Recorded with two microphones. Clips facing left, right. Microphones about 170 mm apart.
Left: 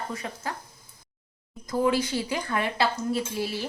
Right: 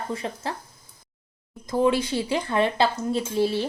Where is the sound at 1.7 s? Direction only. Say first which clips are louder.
Right 3 dB; 25° right (ahead or behind).